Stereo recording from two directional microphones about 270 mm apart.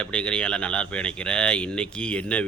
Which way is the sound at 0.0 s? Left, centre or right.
Centre.